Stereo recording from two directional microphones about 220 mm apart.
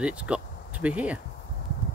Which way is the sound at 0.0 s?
5° right (ahead or behind).